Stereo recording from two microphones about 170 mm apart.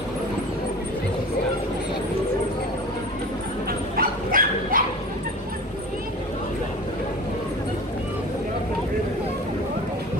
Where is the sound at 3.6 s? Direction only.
55° right (ahead or behind).